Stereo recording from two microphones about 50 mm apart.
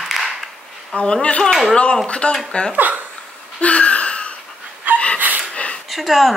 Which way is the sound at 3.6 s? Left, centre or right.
Left.